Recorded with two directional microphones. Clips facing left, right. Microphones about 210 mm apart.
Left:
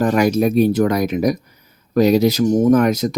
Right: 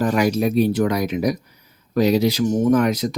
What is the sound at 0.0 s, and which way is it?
Speech, 50° left (ahead or behind).